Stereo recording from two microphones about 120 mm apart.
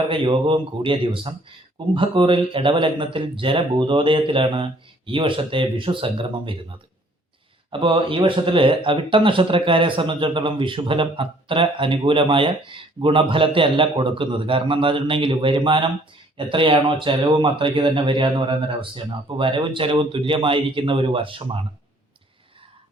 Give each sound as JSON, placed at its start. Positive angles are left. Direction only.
{"t": 0.1, "sound": "speech", "side_deg": -45}